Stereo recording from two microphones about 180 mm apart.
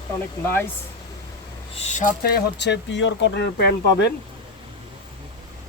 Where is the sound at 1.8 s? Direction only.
40° left (ahead or behind).